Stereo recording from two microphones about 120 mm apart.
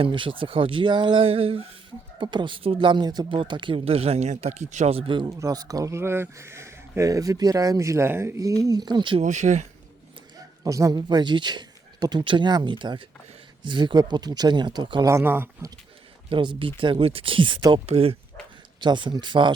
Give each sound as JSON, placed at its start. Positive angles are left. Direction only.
{"t": 0.0, "sound": "speech", "side_deg": -45}
{"t": 2.1, "sound": "speech", "side_deg": -40}
{"t": 5.4, "sound": "speech", "side_deg": -30}
{"t": 9.2, "sound": "speech", "side_deg": -85}
{"t": 10.3, "sound": "speech", "side_deg": -30}
{"t": 15.0, "sound": "speech", "side_deg": -20}
{"t": 16.3, "sound": "speech", "side_deg": -45}
{"t": 17.8, "sound": "speech", "side_deg": -55}
{"t": 18.8, "sound": "speech", "side_deg": -40}